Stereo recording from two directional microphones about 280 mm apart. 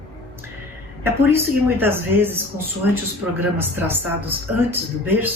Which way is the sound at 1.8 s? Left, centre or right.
Centre.